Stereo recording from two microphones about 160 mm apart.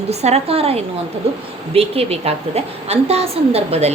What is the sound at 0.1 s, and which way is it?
A woman's voice, 40° right (ahead or behind).